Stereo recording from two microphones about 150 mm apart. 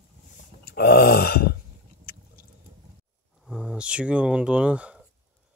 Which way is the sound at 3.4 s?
5° right (ahead or behind).